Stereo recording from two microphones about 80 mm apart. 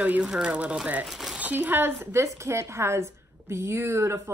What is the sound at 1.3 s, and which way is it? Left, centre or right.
Speech, centre.